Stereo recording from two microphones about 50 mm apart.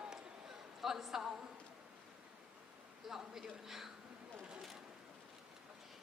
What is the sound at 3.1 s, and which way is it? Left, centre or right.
Speech, centre.